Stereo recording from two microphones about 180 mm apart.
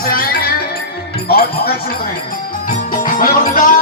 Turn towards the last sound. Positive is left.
turn(degrees=50)  # may be behind; listen again after turning